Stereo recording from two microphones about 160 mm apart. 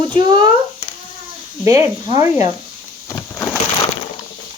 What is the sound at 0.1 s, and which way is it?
Speech, 30° right (ahead or behind).